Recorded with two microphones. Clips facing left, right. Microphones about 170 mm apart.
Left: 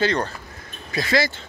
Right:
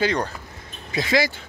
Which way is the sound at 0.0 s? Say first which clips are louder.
Left 1 dB; 10° right (ahead or behind).